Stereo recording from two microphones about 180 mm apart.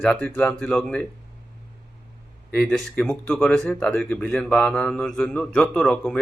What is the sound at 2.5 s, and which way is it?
A man's voice, 5° left (ahead or behind).